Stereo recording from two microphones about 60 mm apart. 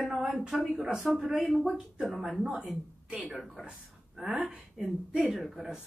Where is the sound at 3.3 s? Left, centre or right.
Centre.